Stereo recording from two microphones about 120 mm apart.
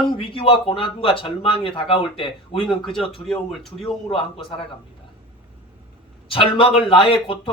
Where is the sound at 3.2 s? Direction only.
5° left (ahead or behind).